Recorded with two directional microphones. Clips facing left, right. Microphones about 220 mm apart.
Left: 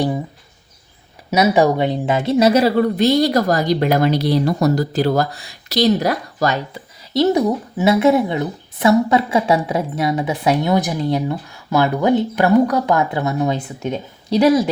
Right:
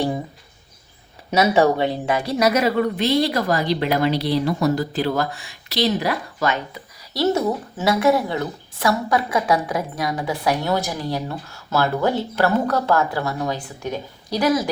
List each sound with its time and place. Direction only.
1.3 s speech: 15° left (ahead or behind); by 6.8 s 35° left (ahead or behind)
7.1 s a woman's voice: 20° left (ahead or behind)